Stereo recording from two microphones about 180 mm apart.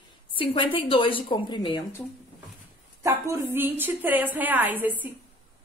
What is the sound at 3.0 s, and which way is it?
A woman's voice, 15° right (ahead or behind).